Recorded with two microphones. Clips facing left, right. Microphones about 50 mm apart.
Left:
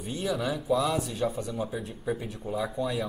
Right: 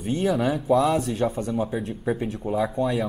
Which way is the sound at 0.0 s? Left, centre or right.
Right.